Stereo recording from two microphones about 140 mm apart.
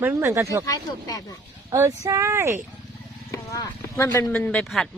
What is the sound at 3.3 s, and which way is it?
Speech, 25° left (ahead or behind).